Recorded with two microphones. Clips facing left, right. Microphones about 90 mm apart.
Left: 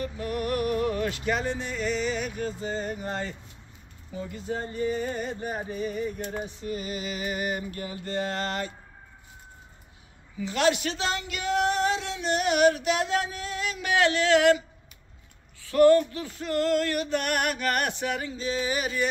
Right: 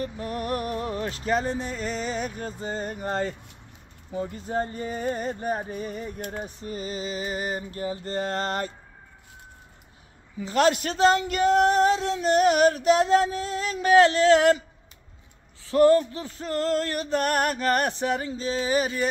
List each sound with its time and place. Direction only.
0.0 s speech: 35° right (ahead or behind)
5.0 s a sound: 40° right (ahead or behind)
5.7 s speech: 40° right (ahead or behind)
10.4 s speech: 40° right (ahead or behind)
15.6 s speech: 30° right (ahead or behind)